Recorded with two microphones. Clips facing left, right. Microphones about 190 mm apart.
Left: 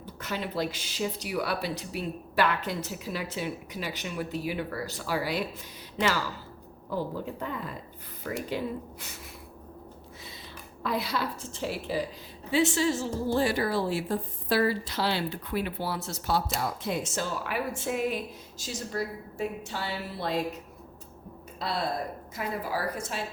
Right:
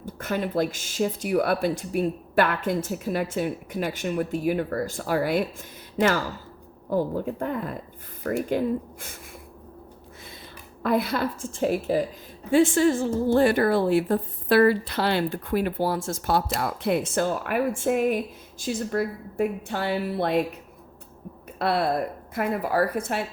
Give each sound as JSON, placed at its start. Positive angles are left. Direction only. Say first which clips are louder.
{"t": 0.0, "sound": "a woman's voice", "louder": "right 6 dB", "side_deg": -50}
{"t": 10.8, "sound": "a woman's voice", "louder": "right 6 dB", "side_deg": -50}
{"t": 21.6, "sound": "a woman's voice", "louder": "right 7 dB", "side_deg": -60}